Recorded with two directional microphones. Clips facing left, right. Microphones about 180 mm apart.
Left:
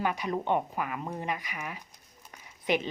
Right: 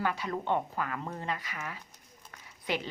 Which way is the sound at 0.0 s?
15° left (ahead or behind).